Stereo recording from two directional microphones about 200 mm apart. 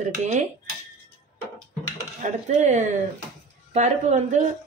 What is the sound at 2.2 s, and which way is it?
Speech, 35° right (ahead or behind).